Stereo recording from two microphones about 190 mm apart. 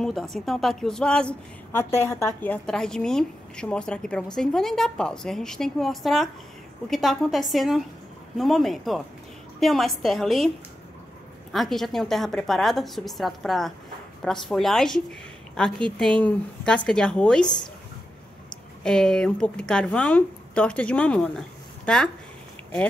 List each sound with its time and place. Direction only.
0.0 s speech: centre (ahead or behind)
11.5 s speech: centre (ahead or behind)
18.8 s speech: 5° left (ahead or behind)